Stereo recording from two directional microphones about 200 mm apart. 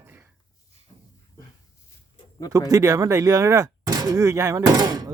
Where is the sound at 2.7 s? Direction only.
15° right (ahead or behind).